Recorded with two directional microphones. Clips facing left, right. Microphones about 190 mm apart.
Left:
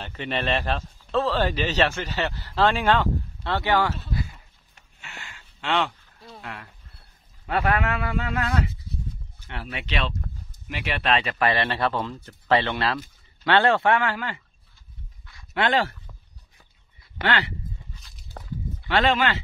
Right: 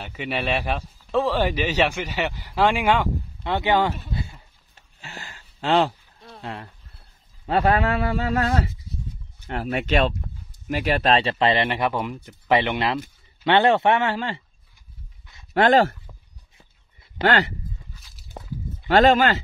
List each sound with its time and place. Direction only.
0.0 s speech: 10° right (ahead or behind)
4.1 s a sound: 25° right (ahead or behind)
6.4 s a man's voice: 30° right (ahead or behind)
15.5 s speech: 45° right (ahead or behind)
17.2 s a man's voice: 40° right (ahead or behind)
18.4 s a sound: 20° right (ahead or behind)
18.9 s speech: 40° right (ahead or behind)